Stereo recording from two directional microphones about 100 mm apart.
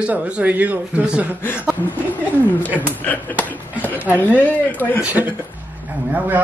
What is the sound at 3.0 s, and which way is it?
Speech, 15° left (ahead or behind).